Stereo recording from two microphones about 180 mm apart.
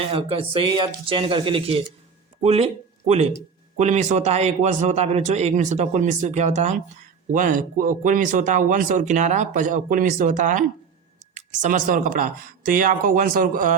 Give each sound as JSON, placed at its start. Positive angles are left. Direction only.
{"t": 0.1, "sound": "speech", "side_deg": -30}
{"t": 3.8, "sound": "a man's voice", "side_deg": -40}